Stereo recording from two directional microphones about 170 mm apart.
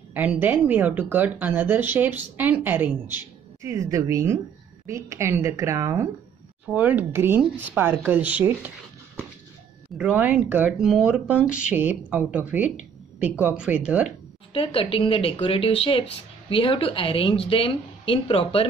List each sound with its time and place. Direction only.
0.1 s speech: 10° right (ahead or behind)
14.5 s speech: 35° left (ahead or behind)